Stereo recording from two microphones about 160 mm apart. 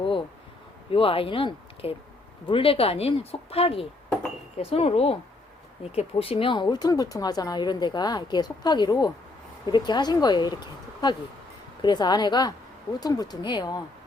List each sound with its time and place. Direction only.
0.9 s speech: 35° left (ahead or behind)